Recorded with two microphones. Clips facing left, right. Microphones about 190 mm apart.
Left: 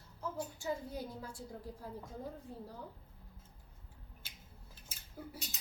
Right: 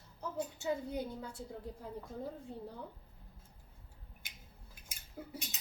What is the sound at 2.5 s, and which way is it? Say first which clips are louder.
Speech: right 2 dB; 25° right (ahead or behind).